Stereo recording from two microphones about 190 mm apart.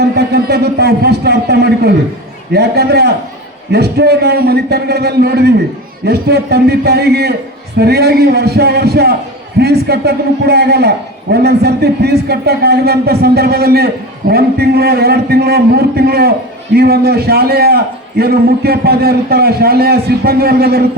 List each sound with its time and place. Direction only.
0.0 s a man's voice: 60° right (ahead or behind)